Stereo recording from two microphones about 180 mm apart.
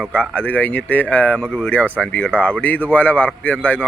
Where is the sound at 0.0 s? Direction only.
5° left (ahead or behind).